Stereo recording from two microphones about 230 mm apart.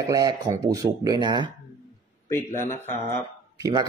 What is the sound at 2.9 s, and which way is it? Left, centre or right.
Speech, centre.